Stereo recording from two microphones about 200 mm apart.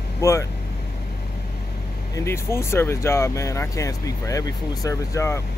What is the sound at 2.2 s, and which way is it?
Speech, 15° left (ahead or behind).